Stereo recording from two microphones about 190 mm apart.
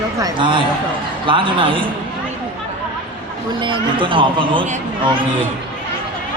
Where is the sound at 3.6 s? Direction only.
25° right (ahead or behind).